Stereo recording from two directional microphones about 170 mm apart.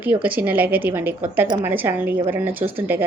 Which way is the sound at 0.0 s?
10° right (ahead or behind).